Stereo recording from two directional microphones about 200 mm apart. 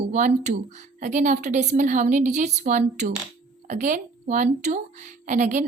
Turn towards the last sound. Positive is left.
turn(degrees=-40)  # may be behind; listen again after turning